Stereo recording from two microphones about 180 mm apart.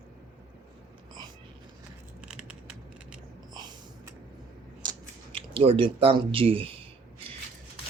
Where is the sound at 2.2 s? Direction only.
5° right (ahead or behind).